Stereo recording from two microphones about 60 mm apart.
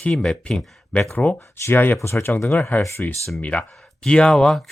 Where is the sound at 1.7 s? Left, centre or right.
Left.